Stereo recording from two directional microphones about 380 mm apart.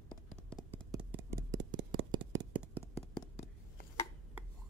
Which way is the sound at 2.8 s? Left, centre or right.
Centre.